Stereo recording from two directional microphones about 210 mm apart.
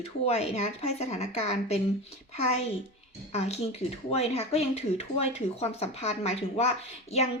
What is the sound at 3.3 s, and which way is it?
A woman's voice, 30° left (ahead or behind).